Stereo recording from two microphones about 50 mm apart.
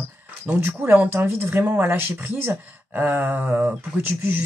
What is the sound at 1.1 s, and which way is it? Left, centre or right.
Speech, right.